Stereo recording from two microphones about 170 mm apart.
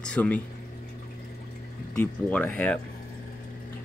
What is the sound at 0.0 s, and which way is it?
Speech, 10° left (ahead or behind).